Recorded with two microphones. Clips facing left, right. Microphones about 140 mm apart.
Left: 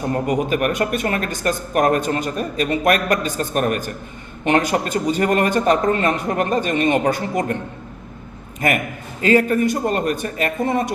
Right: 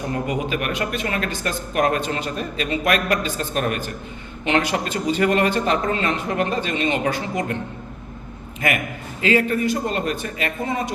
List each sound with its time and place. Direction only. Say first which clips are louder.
0.1 s speech: left 5 dB; 45° left (ahead or behind)
9.2 s speech: left 4 dB; 45° left (ahead or behind)